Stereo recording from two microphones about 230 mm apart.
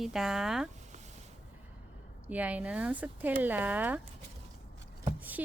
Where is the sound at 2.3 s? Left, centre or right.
Centre.